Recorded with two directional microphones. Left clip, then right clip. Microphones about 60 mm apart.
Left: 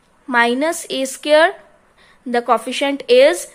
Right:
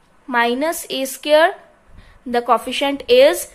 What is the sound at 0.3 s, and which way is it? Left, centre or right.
A woman's voice, left.